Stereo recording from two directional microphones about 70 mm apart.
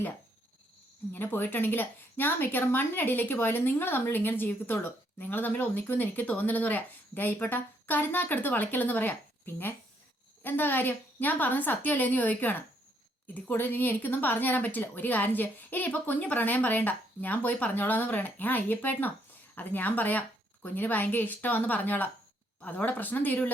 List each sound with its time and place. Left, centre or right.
1.1 s speech: left
10.4 s speech: left